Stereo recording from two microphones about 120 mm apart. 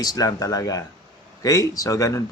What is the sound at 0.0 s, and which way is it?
A man's voice, 30° left (ahead or behind).